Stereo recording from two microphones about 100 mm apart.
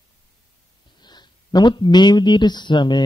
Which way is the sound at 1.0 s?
45° left (ahead or behind).